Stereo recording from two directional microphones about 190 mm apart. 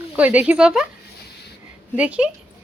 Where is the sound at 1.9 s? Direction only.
5° right (ahead or behind).